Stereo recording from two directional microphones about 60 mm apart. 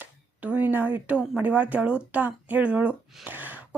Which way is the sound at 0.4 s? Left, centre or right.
Right.